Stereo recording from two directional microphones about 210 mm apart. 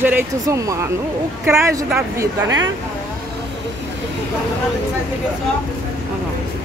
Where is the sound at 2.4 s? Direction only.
60° right (ahead or behind).